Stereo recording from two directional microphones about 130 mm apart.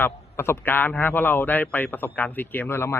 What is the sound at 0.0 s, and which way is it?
A man's voice, 20° left (ahead or behind).